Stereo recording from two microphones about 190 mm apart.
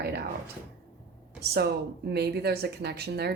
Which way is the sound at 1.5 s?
60° right (ahead or behind).